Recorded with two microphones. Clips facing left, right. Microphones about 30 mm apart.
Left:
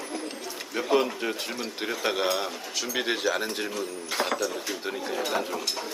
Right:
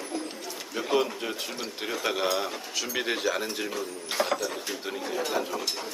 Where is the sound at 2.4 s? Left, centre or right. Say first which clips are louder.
Even; centre.